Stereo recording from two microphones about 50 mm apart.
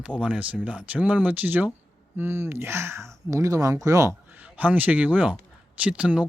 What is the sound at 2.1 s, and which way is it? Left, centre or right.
Speech, right.